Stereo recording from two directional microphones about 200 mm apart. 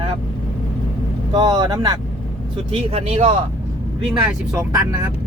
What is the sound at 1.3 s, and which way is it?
Speech, 20° right (ahead or behind).